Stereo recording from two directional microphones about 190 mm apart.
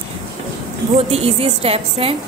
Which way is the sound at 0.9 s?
30° right (ahead or behind).